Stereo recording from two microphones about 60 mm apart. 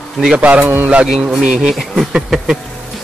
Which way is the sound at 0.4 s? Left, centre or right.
Right.